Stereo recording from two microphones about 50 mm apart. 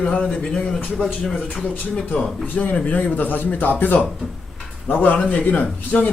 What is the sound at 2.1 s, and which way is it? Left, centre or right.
Speech, left.